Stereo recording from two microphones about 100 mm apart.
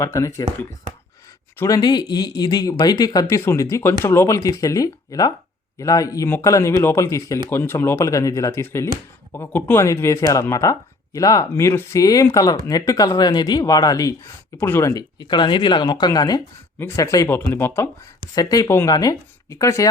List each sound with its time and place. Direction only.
0.0 s speech: 30° left (ahead or behind)
1.5 s speech: 30° left (ahead or behind)
1.8 s speech: 45° left (ahead or behind)
3.2 s speech: 25° left (ahead or behind)
9.8 s speech: 30° left (ahead or behind)
11.9 s speech: 35° left (ahead or behind)
14.6 s speech: 25° left (ahead or behind)
14.9 s speech: 45° left (ahead or behind)
16.7 s speech: 25° left (ahead or behind)
17.0 s speech: 35° left (ahead or behind)
17.5 s speech: 25° left (ahead or behind)
18.3 s speech: 40° left (ahead or behind)